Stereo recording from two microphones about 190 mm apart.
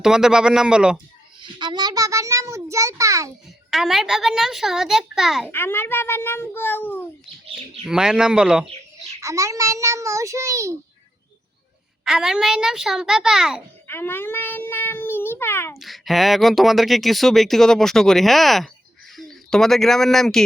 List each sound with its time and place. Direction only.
0.0 s speech: 5° right (ahead or behind)
1.4 s a child's voice: 25° right (ahead or behind)
3.7 s speech: centre (ahead or behind)
5.5 s a child's voice: 10° left (ahead or behind)
7.9 s speech: 5° right (ahead or behind)
9.2 s a child's voice: 15° right (ahead or behind)
12.0 s speech: 5° right (ahead or behind)
13.8 s a child's voice: 10° left (ahead or behind)
15.8 s speech: centre (ahead or behind)